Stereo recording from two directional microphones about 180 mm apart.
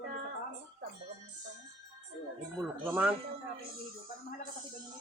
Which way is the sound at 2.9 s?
10° right (ahead or behind).